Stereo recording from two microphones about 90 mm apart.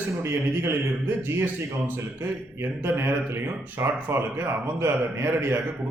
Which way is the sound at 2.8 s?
25° right (ahead or behind).